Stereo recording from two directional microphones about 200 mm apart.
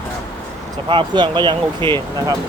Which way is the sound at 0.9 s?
25° right (ahead or behind).